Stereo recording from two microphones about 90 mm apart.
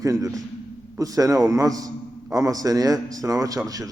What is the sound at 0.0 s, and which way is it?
A man's voice, 40° right (ahead or behind).